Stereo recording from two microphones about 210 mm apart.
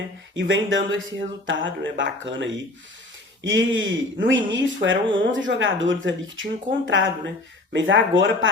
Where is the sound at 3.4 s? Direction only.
60° right (ahead or behind).